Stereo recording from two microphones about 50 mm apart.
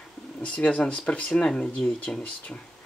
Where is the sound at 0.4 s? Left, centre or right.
Left.